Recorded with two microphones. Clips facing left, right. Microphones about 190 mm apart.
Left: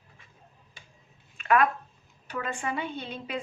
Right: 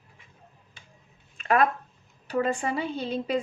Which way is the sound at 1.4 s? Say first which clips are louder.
Right 1 dB; 35° right (ahead or behind).